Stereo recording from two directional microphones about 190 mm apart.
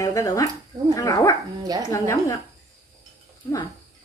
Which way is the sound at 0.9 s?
20° left (ahead or behind).